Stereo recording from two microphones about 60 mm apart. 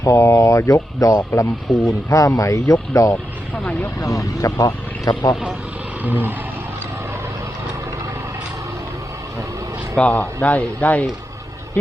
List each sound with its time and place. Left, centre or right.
0.0 s speech: left
1.4 s speech: left
6.0 s vehicle: right
10.0 s a man's voice: left